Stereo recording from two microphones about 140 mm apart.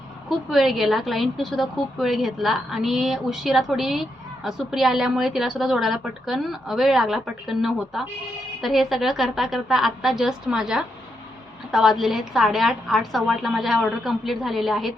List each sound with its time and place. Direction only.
0.3 s a woman's voice: centre (ahead or behind)